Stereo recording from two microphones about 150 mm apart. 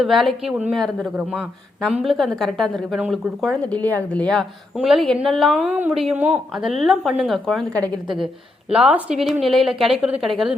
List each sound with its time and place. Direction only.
0.0 s a woman's voice: centre (ahead or behind)
3.8 s a woman's voice: 10° left (ahead or behind)
8.7 s a woman's voice: 10° right (ahead or behind)